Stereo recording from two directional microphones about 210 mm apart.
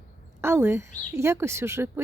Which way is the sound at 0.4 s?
10° right (ahead or behind).